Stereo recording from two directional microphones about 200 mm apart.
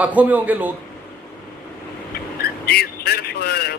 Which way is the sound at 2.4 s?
50° left (ahead or behind).